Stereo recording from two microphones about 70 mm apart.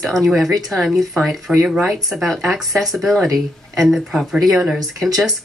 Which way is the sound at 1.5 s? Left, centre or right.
Centre.